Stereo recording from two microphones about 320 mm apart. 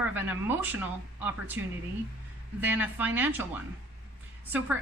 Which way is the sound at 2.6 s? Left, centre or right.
Centre.